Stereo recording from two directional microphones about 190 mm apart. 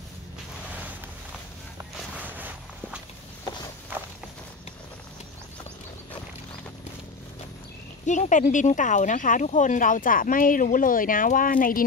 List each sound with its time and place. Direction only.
2.1 s walk: 10° right (ahead or behind)
8.0 s speech: 40° left (ahead or behind)